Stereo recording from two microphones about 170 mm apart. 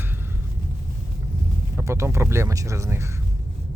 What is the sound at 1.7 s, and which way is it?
Speech, 15° right (ahead or behind).